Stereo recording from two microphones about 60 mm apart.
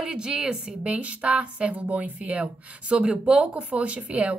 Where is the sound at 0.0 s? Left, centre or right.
Centre.